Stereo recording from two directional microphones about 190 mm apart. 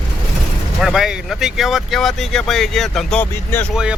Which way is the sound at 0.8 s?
Centre (ahead or behind).